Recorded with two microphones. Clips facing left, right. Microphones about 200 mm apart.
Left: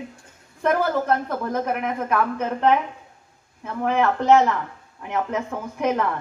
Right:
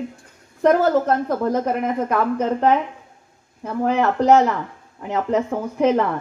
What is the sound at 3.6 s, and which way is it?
A woman's voice, 35° right (ahead or behind).